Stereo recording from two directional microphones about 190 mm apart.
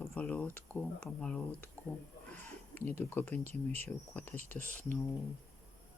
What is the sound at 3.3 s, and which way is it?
Speech, 35° right (ahead or behind).